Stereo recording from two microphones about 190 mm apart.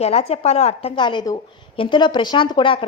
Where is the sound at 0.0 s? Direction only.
35° left (ahead or behind).